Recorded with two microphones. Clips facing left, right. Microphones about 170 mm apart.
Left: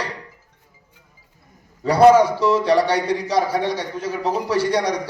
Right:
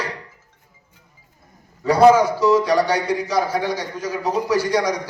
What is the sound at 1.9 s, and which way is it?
A man's voice, 30° left (ahead or behind).